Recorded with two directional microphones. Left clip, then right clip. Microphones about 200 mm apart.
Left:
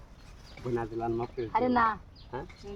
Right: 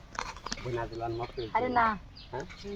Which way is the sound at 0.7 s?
45° left (ahead or behind).